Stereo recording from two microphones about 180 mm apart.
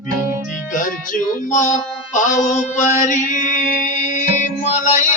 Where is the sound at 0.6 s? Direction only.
45° left (ahead or behind).